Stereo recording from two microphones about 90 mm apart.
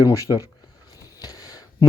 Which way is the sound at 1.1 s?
45° left (ahead or behind).